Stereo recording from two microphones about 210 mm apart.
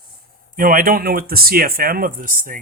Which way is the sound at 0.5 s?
40° right (ahead or behind).